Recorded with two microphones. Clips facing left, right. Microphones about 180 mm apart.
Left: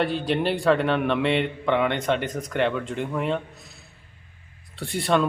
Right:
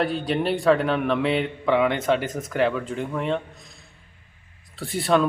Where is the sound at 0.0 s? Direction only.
Centre (ahead or behind).